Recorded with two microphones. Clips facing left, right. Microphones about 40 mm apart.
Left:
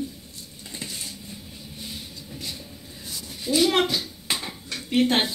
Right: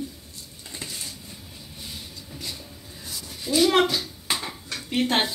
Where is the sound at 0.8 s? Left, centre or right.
Left.